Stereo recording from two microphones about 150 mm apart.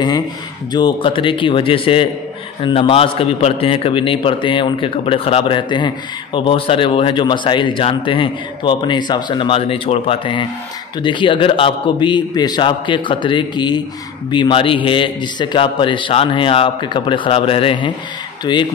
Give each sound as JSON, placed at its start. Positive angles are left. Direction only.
{"t": 0.7, "sound": "a man's voice", "side_deg": 30}